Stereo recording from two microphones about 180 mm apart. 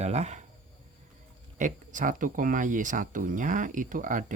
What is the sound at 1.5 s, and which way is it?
Speech, 45° right (ahead or behind).